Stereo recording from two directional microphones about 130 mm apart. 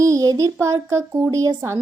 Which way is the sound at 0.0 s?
30° right (ahead or behind).